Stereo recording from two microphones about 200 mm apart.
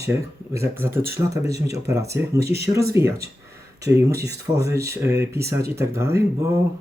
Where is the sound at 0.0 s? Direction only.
15° right (ahead or behind).